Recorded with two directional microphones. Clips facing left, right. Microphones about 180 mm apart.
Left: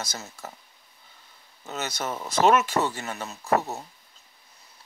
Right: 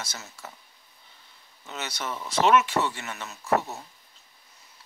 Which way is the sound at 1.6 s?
45° left (ahead or behind).